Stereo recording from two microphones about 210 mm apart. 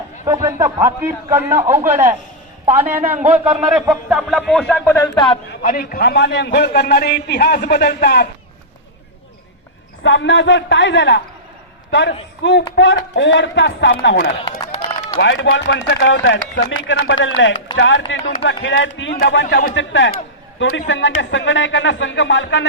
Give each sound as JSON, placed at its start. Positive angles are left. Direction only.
{"t": 0.3, "sound": "a man's voice", "side_deg": -15}
{"t": 5.6, "sound": "a man's voice", "side_deg": 40}
{"t": 10.0, "sound": "a man's voice", "side_deg": 65}
{"t": 14.6, "sound": "run", "side_deg": 20}
{"t": 15.2, "sound": "speech", "side_deg": 60}
{"t": 19.7, "sound": "speech", "side_deg": 60}